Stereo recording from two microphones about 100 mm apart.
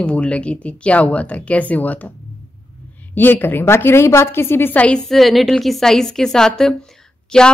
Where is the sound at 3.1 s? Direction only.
20° left (ahead or behind).